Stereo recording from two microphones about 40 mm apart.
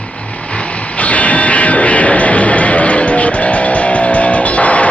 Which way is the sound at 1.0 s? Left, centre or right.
Left.